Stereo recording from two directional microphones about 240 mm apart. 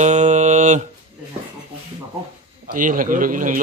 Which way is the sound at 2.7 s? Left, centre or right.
Right.